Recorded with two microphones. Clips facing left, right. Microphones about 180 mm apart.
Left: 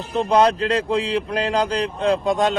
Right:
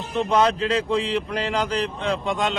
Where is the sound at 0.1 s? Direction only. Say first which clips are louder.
Left 3 dB; 35° left (ahead or behind).